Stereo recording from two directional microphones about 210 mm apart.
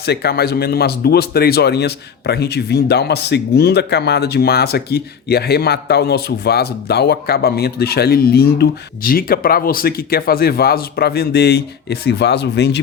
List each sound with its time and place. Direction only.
0.0 s speech: 50° left (ahead or behind)